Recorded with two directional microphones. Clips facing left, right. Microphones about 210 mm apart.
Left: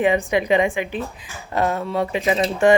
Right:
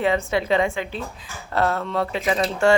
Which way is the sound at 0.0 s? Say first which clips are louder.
Left 3 dB; 15° left (ahead or behind).